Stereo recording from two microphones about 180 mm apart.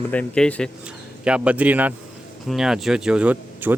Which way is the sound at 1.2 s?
5° right (ahead or behind).